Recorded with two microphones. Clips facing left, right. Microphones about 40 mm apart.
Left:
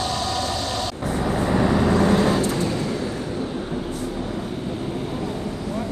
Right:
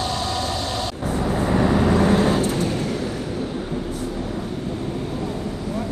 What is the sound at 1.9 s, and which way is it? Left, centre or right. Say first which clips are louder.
Vehicle: right 1 dB; centre.